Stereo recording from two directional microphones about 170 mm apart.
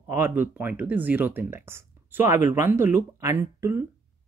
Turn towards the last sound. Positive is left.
turn(degrees=-15)  # may be behind; listen again after turning